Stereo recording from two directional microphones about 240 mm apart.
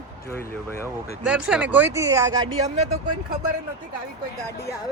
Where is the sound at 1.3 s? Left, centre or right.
Centre.